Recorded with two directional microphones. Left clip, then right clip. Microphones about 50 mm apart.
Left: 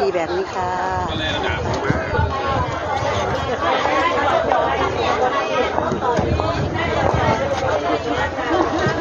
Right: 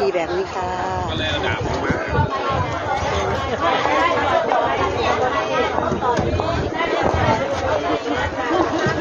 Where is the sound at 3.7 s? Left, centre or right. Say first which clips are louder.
Right 1 dB; centre.